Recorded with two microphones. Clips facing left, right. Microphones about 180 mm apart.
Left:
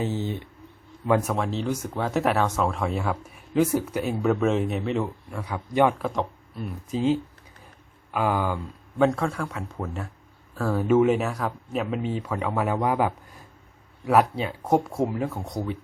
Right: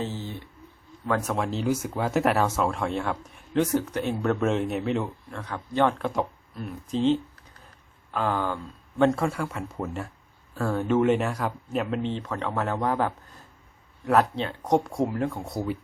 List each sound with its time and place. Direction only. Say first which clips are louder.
0.0 s a sound: left 5 dB; 20° left (ahead or behind)
1.3 s speech: even; centre (ahead or behind)
9.0 s speech: right 2 dB; centre (ahead or behind)